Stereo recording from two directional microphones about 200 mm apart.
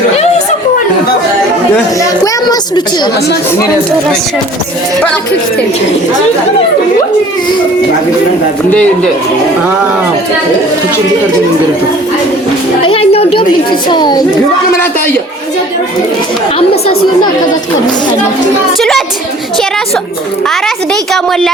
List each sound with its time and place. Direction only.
2.0 s a woman's voice: 15° left (ahead or behind)
12.8 s a sound: 30° left (ahead or behind)
13.8 s a child's voice: 20° left (ahead or behind)
18.8 s a woman's voice: centre (ahead or behind)
20.5 s a woman's voice: centre (ahead or behind)